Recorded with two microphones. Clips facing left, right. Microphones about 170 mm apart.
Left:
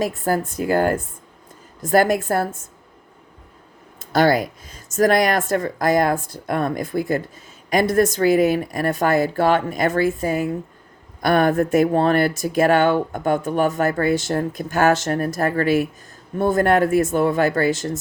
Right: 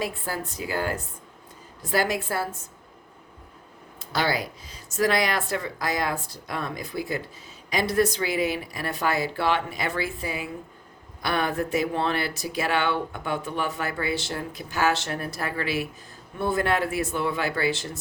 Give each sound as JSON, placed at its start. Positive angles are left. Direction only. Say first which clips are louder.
{"t": 0.0, "sound": "speech", "louder": "left 9 dB", "side_deg": 45}
{"t": 4.0, "sound": "speech", "louder": "left 9 dB", "side_deg": 50}